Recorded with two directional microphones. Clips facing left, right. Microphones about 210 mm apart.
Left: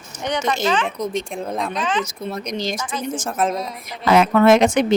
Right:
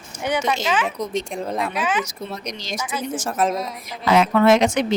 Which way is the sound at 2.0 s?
50° left (ahead or behind).